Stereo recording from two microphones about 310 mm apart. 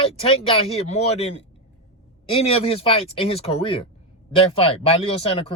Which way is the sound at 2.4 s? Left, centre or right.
Centre.